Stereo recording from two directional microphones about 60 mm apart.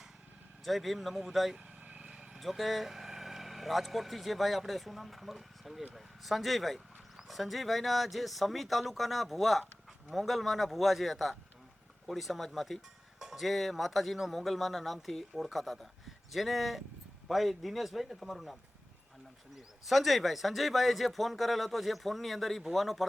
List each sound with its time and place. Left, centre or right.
0.6 s speech: centre
1.5 s vehicle: right
2.4 s speech: centre
19.5 s speech: centre